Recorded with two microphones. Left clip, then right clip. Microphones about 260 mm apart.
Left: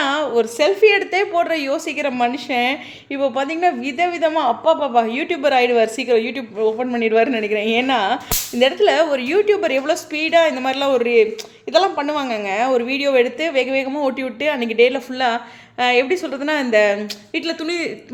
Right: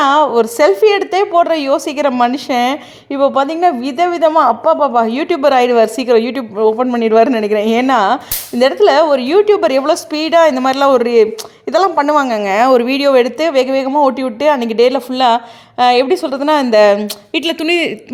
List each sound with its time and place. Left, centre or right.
0.0 s a woman's voice: right